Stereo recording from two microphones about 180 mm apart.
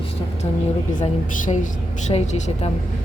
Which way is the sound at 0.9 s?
45° left (ahead or behind).